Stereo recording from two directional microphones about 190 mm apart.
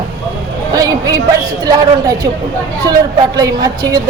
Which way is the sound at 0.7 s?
20° right (ahead or behind).